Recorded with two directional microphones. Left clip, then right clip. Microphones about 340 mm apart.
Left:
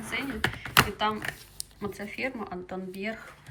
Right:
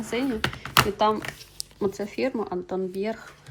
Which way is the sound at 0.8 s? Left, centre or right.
Centre.